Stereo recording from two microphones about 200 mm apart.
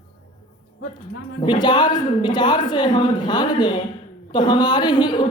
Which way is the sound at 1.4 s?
20° left (ahead or behind).